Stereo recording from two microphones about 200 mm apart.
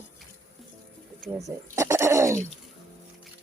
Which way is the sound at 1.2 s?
Centre (ahead or behind).